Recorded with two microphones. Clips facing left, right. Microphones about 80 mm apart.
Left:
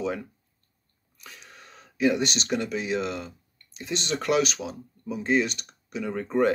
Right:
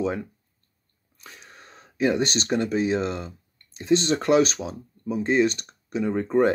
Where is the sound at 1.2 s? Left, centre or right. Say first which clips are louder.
Right 1 dB; right.